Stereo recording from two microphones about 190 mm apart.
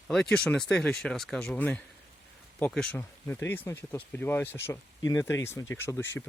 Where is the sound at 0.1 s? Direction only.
5° left (ahead or behind).